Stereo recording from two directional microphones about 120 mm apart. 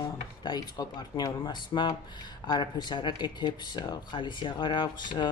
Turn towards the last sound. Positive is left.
turn(degrees=40)  # may be behind; listen again after turning